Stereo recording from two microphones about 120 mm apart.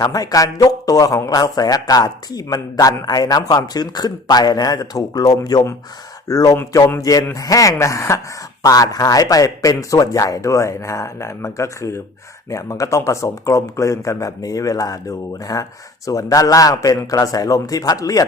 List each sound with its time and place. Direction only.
0.0 s speech: 30° left (ahead or behind)